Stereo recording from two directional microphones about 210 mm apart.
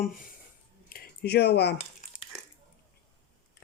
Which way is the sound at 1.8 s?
30° left (ahead or behind).